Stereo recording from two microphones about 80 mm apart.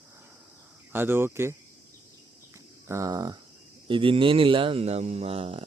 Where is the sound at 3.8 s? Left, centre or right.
Right.